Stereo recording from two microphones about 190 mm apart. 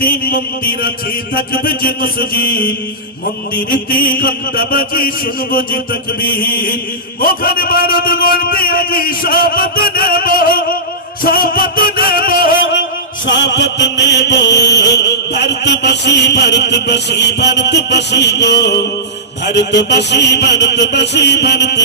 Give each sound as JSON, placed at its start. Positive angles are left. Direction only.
{"t": 0.0, "sound": "a man's voice", "side_deg": 50}
{"t": 11.2, "sound": "music", "side_deg": 50}
{"t": 13.2, "sound": "music", "side_deg": 75}